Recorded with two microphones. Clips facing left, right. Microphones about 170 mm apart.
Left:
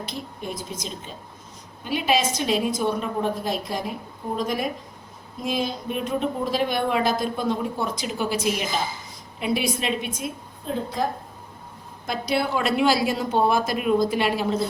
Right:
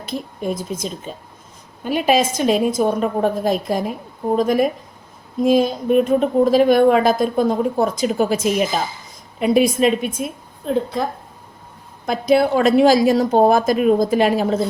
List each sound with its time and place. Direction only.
0.1 s a woman's voice: 50° right (ahead or behind)
12.0 s a woman's voice: 50° right (ahead or behind)